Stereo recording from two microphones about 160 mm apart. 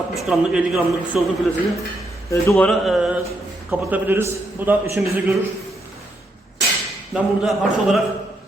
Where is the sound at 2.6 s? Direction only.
Centre (ahead or behind).